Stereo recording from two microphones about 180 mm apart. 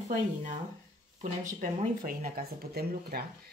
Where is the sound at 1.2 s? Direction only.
45° right (ahead or behind).